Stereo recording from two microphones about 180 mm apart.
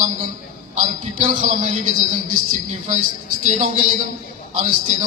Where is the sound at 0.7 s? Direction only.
45° right (ahead or behind).